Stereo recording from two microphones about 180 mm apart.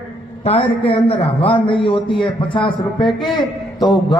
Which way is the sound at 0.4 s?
30° left (ahead or behind).